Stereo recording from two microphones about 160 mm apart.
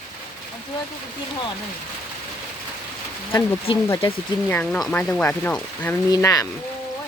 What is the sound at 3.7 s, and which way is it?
Speech, 35° left (ahead or behind).